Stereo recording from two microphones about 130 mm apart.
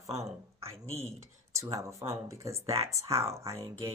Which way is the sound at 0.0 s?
20° right (ahead or behind).